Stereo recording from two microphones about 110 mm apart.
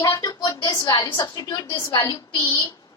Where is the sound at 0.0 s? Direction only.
30° left (ahead or behind).